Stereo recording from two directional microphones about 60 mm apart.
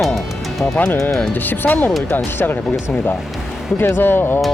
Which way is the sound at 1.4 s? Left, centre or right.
Left.